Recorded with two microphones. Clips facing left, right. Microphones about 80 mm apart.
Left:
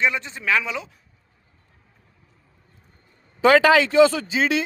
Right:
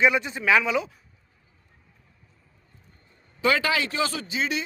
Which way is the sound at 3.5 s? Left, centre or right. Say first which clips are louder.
Left 9 dB; left.